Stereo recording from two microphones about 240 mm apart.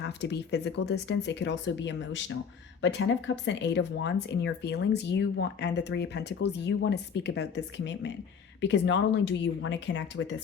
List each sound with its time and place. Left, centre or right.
0.0 s speech: left